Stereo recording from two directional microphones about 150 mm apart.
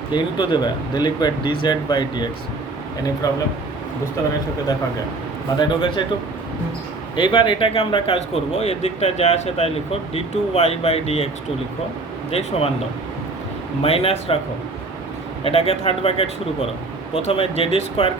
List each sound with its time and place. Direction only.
0.1 s speech: 30° left (ahead or behind)
5.5 s speech: 30° left (ahead or behind)
7.2 s speech: 35° left (ahead or behind)
12.3 s speech: 40° left (ahead or behind)
13.8 s speech: 40° left (ahead or behind)
15.4 s speech: 40° left (ahead or behind)